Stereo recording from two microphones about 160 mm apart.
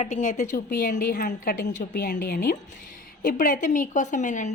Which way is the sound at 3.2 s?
55° left (ahead or behind).